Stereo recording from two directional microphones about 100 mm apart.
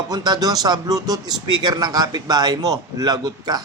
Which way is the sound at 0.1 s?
40° right (ahead or behind).